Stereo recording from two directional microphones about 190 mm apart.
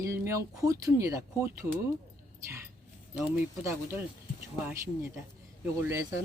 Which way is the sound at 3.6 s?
15° right (ahead or behind).